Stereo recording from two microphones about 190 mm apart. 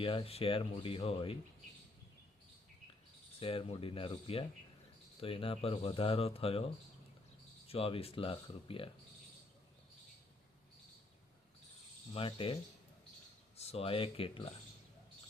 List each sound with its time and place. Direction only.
0.0 s speech: 30° left (ahead or behind)
3.4 s speech: 30° left (ahead or behind)
7.7 s speech: 30° left (ahead or behind)
12.1 s speech: 30° left (ahead or behind)
13.6 s speech: 30° left (ahead or behind)